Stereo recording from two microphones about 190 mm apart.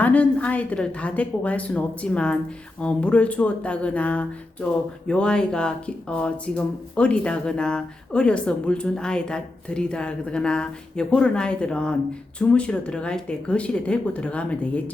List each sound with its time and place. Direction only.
0.0 s a woman's voice: 10° left (ahead or behind)